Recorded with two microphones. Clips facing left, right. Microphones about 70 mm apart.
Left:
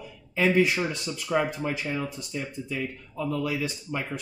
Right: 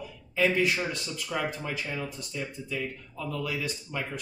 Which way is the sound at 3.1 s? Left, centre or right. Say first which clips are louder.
Left 5 dB; centre.